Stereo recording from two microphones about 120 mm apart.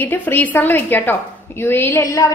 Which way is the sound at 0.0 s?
15° left (ahead or behind).